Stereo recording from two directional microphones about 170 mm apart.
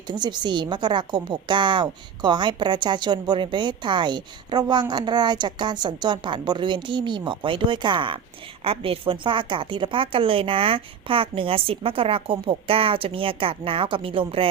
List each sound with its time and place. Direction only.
0.1 s a woman's voice: 25° right (ahead or behind)